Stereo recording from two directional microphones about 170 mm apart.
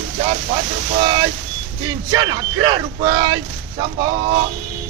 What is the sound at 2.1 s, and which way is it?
Speech, 25° right (ahead or behind).